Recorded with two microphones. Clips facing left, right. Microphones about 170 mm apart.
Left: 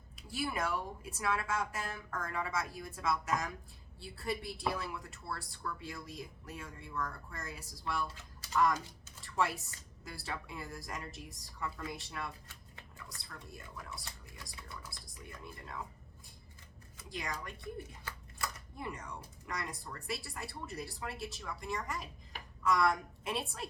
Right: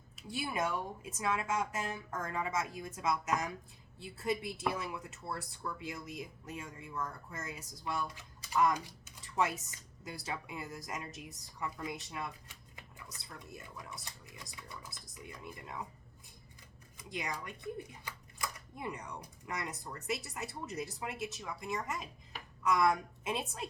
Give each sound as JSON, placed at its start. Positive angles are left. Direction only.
{"t": 0.3, "sound": "speech", "side_deg": -20}
{"t": 17.0, "sound": "speech", "side_deg": -20}